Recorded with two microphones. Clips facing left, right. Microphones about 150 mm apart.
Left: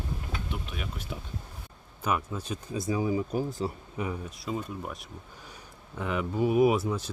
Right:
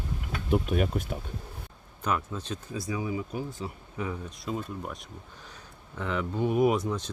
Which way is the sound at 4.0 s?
20° left (ahead or behind).